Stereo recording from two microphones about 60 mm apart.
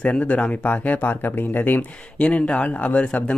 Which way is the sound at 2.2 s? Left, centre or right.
Left.